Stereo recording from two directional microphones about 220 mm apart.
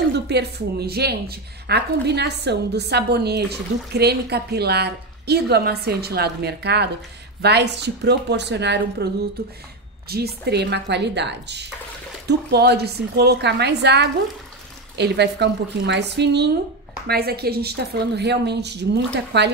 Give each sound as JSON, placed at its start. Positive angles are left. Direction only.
{"t": 0.1, "sound": "speech", "side_deg": -50}